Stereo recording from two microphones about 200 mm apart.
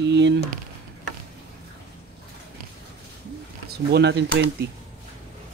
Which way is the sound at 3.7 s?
55° right (ahead or behind).